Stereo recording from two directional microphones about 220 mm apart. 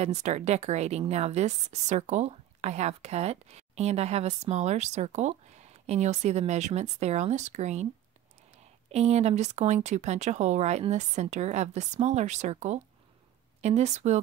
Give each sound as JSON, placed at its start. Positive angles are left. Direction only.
{"t": 0.0, "sound": "a woman's voice", "side_deg": -30}
{"t": 8.9, "sound": "a woman's voice", "side_deg": -30}